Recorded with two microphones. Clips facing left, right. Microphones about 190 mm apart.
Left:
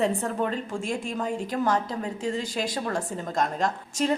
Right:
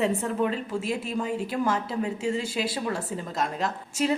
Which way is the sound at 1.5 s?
40° left (ahead or behind).